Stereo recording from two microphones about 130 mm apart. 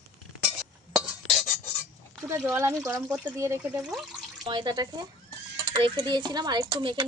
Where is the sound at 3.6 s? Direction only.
5° right (ahead or behind).